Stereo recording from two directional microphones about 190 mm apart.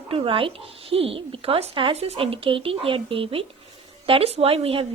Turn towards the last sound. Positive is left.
turn(degrees=-30)  # may be behind; listen again after turning